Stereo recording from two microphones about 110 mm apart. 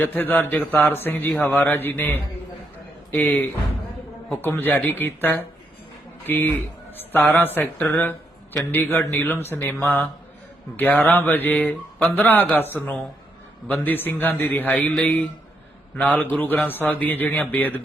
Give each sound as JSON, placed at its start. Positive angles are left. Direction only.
{"t": 0.0, "sound": "speech", "side_deg": 15}
{"t": 4.3, "sound": "speech", "side_deg": 20}